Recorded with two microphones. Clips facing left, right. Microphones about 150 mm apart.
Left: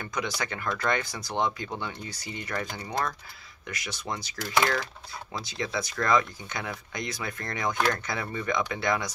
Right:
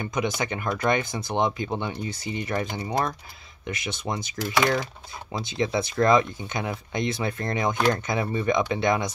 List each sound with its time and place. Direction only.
0.0 s speech: 20° right (ahead or behind)